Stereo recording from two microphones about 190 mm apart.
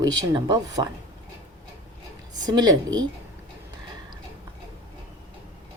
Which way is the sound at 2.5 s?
20° right (ahead or behind).